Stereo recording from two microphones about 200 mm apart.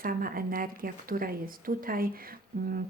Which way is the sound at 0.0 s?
45° right (ahead or behind).